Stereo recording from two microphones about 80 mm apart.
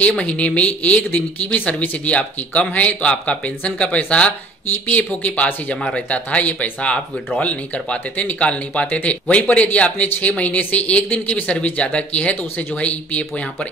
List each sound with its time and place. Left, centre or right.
0.0 s speech: centre